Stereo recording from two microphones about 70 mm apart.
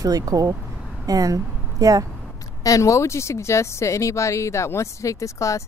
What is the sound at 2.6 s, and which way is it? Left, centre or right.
Speech, left.